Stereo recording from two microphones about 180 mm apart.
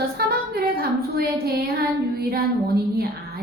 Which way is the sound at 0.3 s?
55° right (ahead or behind).